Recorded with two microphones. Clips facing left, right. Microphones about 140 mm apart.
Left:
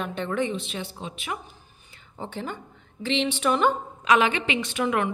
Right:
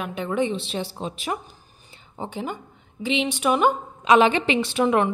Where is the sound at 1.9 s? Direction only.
20° right (ahead or behind).